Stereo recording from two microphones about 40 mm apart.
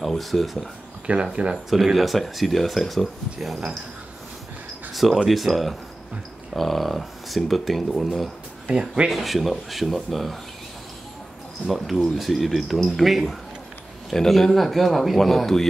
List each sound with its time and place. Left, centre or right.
0.0 s speech: centre
1.0 s speech: right
2.0 s speech: centre
4.9 s speech: centre
8.6 s speech: right
9.1 s speech: centre
11.6 s speech: centre
14.1 s speech: centre